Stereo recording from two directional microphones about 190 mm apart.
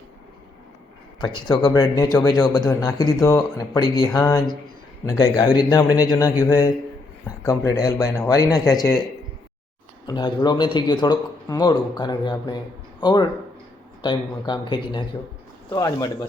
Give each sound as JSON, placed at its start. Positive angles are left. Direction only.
{"t": 1.2, "sound": "a man's voice", "side_deg": 25}
{"t": 10.1, "sound": "a man's voice", "side_deg": 20}